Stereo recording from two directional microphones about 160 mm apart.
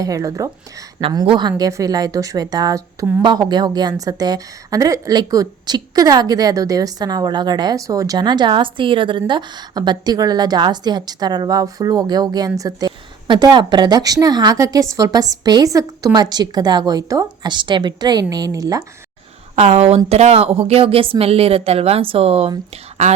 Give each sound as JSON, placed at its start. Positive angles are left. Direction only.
{"t": 0.0, "sound": "a woman's voice", "side_deg": -20}
{"t": 19.5, "sound": "a woman's voice", "side_deg": -40}